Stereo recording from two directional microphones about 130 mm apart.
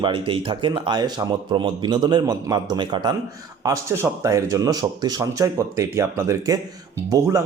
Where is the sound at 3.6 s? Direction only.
25° right (ahead or behind).